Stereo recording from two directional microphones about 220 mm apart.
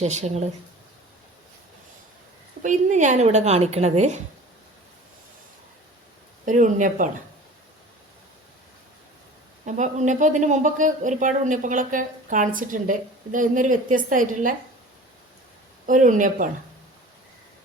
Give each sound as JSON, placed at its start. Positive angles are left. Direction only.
{"t": 0.0, "sound": "speech", "side_deg": -30}
{"t": 2.6, "sound": "speech", "side_deg": -35}
{"t": 6.4, "sound": "speech", "side_deg": -35}
{"t": 9.6, "sound": "speech", "side_deg": -35}
{"t": 15.9, "sound": "speech", "side_deg": -35}